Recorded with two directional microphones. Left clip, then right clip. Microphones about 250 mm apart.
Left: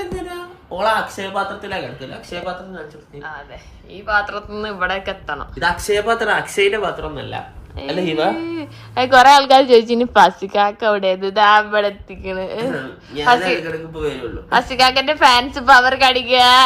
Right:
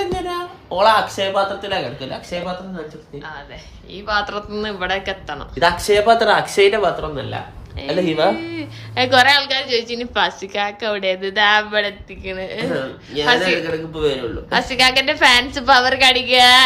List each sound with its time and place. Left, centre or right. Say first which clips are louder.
0.8 s speech: right 4 dB; centre
2.3 s speech: right 2 dB; right
3.9 s speech: left 2 dB; centre